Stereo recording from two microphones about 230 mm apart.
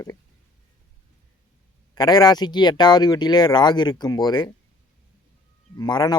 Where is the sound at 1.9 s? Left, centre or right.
Centre.